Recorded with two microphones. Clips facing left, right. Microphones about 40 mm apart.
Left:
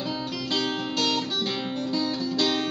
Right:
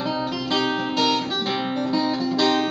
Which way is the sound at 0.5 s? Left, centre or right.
Centre.